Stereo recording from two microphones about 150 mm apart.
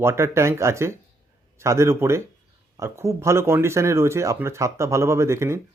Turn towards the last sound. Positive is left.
turn(degrees=-15)  # may be behind; listen again after turning